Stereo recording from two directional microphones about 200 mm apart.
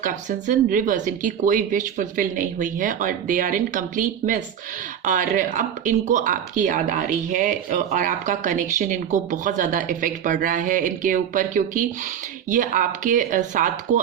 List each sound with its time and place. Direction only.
0.0 s speech: 40° right (ahead or behind)